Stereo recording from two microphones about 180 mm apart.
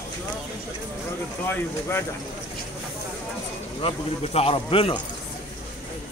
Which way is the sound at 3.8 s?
35° left (ahead or behind).